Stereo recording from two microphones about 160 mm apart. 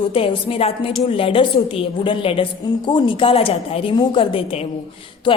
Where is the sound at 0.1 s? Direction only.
35° left (ahead or behind).